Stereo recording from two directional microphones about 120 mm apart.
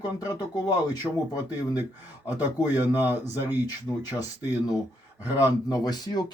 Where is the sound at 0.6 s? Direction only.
35° left (ahead or behind).